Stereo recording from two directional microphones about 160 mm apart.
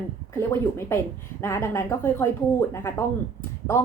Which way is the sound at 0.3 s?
15° left (ahead or behind).